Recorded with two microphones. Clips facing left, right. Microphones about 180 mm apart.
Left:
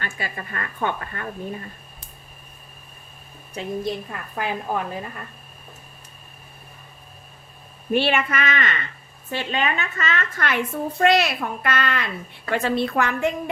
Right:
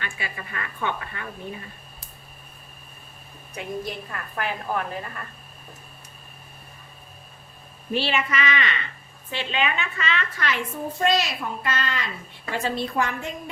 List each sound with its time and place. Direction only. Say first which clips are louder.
0.0 s a woman's voice: left 3 dB; 45° left (ahead or behind)
4.4 s a woman's voice: left 2 dB; 15° left (ahead or behind)
7.9 s a woman's voice: left 4 dB; 55° left (ahead or behind)